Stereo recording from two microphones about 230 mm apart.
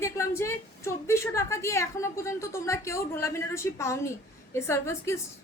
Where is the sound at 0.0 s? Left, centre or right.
Centre.